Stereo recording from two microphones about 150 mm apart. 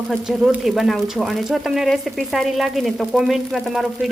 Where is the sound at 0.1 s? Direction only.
5° right (ahead or behind).